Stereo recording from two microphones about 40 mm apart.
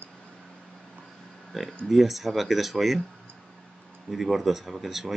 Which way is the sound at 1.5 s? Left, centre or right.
Centre.